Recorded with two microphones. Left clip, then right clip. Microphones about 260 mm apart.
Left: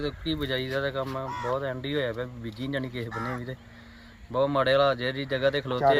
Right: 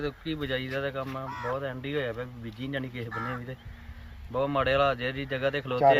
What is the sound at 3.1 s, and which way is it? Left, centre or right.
Speech, left.